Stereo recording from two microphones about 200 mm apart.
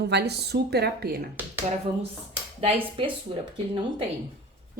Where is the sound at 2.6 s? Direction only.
25° right (ahead or behind).